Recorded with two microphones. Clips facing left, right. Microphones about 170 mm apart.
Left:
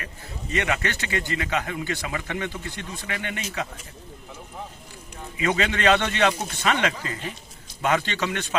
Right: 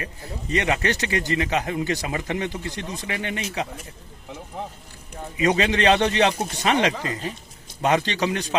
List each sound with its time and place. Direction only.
0.5 s speech: 30° right (ahead or behind)
1.3 s speech: 25° right (ahead or behind)
5.5 s speech: 35° right (ahead or behind)